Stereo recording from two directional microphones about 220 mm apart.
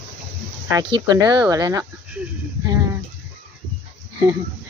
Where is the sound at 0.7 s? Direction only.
15° right (ahead or behind).